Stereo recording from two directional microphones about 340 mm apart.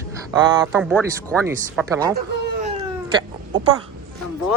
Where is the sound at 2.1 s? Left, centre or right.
Right.